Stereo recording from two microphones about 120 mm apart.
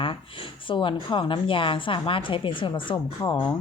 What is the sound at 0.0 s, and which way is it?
A woman's voice, 45° left (ahead or behind).